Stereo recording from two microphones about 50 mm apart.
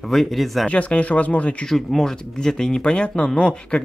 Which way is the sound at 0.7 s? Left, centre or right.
Left.